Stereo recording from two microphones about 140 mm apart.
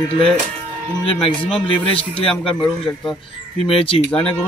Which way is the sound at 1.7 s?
40° left (ahead or behind).